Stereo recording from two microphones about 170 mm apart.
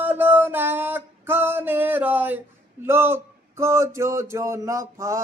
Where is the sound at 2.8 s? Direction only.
15° right (ahead or behind).